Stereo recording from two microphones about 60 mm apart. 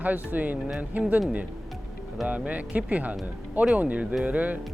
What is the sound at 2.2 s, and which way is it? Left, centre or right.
Speech, right.